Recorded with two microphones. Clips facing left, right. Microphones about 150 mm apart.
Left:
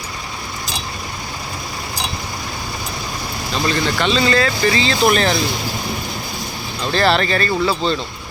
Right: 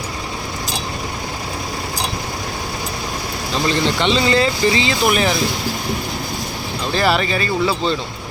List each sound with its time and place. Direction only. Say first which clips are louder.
3.5 s speech: right 1 dB; 20° right (ahead or behind)
6.9 s speech: left 1 dB; 10° right (ahead or behind)